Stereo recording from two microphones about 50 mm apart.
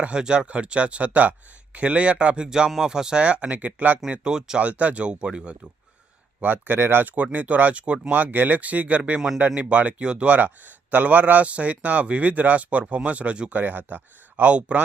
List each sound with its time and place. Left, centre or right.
0.0 s speech: centre
4.1 s speech: centre
4.8 s speech: right
6.4 s speech: right
6.7 s speech: right
7.3 s speech: right
8.1 s speech: right
13.5 s speech: right